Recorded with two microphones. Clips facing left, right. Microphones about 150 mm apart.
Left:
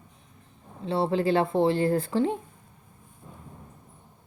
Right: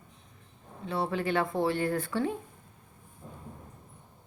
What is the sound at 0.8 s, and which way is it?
A woman's voice, 30° left (ahead or behind).